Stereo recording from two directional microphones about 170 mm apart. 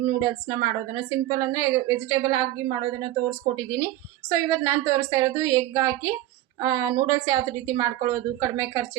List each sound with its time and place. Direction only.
0.0 s a woman's voice: 20° right (ahead or behind)